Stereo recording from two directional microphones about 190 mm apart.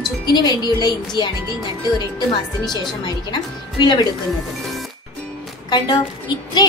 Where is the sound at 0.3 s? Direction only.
20° left (ahead or behind).